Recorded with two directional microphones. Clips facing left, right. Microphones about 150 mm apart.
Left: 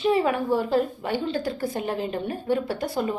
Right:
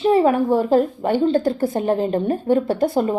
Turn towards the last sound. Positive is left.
turn(degrees=-45)  # may be behind; listen again after turning